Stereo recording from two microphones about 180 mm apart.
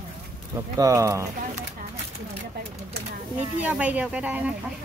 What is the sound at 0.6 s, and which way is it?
Speech, 20° right (ahead or behind).